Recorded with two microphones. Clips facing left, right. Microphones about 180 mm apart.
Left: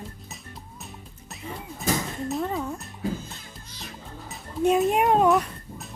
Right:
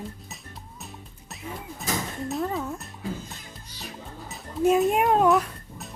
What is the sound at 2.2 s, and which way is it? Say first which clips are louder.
Speech: even; centre (ahead or behind).